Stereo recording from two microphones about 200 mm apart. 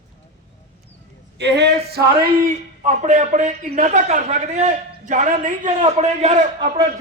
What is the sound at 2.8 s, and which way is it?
A woman's voice, 35° right (ahead or behind).